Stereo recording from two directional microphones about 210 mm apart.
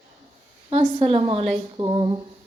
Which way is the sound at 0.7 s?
30° right (ahead or behind).